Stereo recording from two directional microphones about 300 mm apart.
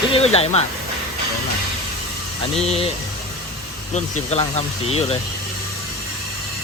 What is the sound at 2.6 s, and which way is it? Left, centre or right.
Speech, centre.